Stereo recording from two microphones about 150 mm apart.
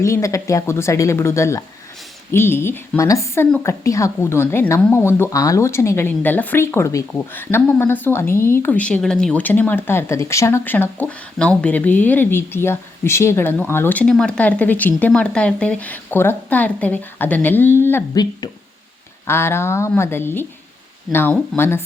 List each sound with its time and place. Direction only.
0.0 s a woman's voice: 20° left (ahead or behind)
19.3 s a woman's voice: 15° left (ahead or behind)